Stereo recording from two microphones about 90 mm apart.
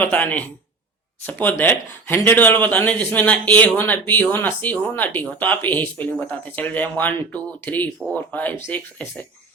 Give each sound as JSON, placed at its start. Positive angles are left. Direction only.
{"t": 0.0, "sound": "speech", "side_deg": 20}